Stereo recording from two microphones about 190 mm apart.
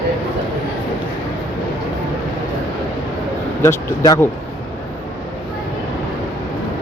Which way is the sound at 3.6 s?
15° left (ahead or behind).